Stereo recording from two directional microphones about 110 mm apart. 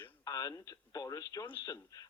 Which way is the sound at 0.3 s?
35° left (ahead or behind).